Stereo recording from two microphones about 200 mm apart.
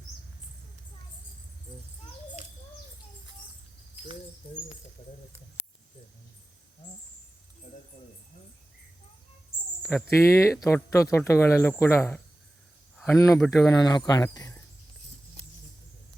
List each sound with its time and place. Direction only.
5.0 s speech: 20° left (ahead or behind)
9.9 s speech: 15° left (ahead or behind)
13.4 s speech: 5° left (ahead or behind)
13.7 s speech: 20° left (ahead or behind)